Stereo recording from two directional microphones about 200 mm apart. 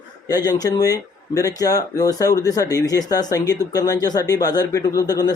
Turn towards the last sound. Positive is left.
turn(degrees=20)  # may be behind; listen again after turning